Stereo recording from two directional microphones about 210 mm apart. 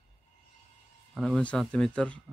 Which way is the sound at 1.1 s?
5° left (ahead or behind).